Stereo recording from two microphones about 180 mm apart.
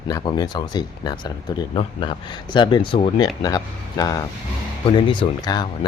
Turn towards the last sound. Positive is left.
turn(degrees=25)  # may be behind; listen again after turning